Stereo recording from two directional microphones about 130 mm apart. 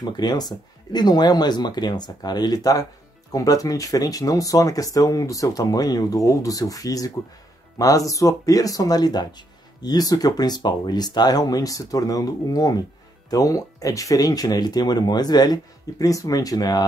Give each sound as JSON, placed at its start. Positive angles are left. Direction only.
{"t": 0.0, "sound": "speech", "side_deg": 30}